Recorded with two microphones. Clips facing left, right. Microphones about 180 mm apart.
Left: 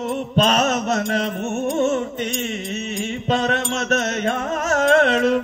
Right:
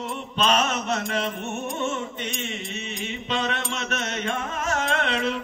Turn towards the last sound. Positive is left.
turn(degrees=45)  # may be behind; listen again after turning